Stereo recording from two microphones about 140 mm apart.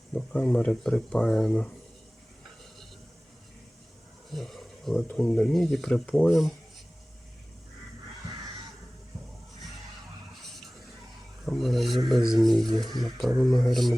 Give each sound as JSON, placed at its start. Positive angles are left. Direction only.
{"t": 0.1, "sound": "speech", "side_deg": 10}
{"t": 4.3, "sound": "a sound", "side_deg": 0}
{"t": 5.0, "sound": "speech", "side_deg": 5}
{"t": 11.4, "sound": "speech", "side_deg": 0}
{"t": 12.6, "sound": "speech", "side_deg": -30}
{"t": 13.0, "sound": "speech", "side_deg": 0}